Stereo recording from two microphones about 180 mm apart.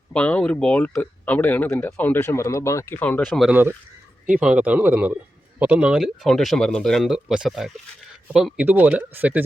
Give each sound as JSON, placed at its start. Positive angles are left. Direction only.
{"t": 0.1, "sound": "speech", "side_deg": 5}
{"t": 3.2, "sound": "speech", "side_deg": 0}